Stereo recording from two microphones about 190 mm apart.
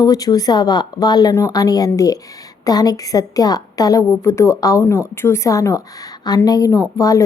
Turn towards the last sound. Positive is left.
turn(degrees=15)  # may be behind; listen again after turning